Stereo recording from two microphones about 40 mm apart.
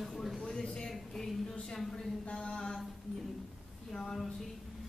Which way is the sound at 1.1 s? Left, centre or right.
Centre.